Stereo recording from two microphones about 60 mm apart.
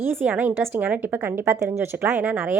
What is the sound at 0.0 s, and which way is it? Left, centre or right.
Speech, right.